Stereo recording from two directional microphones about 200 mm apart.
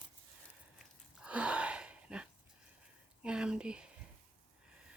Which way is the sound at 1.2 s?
5° right (ahead or behind).